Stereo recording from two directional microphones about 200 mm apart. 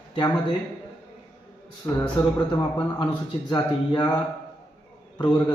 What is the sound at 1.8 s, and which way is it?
A man's voice, 15° left (ahead or behind).